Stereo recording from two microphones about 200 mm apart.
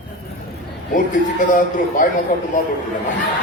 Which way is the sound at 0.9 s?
40° left (ahead or behind).